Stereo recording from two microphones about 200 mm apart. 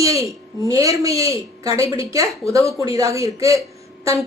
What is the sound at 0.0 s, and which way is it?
A woman's voice, 15° right (ahead or behind).